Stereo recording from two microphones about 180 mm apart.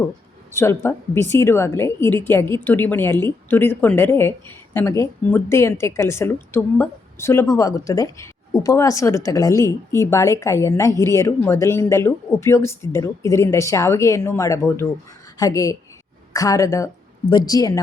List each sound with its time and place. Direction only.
0.5 s a woman's voice: 15° left (ahead or behind)